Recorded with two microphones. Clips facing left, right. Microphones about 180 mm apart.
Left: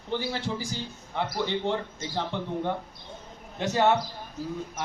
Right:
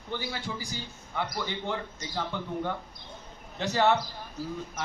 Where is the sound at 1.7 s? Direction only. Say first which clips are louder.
Left 5 dB; 25° left (ahead or behind).